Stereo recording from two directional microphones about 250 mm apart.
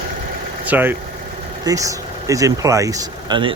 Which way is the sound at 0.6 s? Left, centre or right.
Centre.